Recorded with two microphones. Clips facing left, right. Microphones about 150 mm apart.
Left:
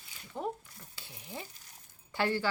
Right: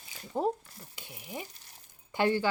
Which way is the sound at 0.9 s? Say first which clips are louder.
Right 3 dB; 15° right (ahead or behind).